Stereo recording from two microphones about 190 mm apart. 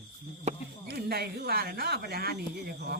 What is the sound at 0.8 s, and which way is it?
Speech, 60° right (ahead or behind).